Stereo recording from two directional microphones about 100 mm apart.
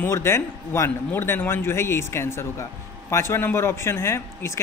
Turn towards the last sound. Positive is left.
turn(degrees=25)  # may be behind; listen again after turning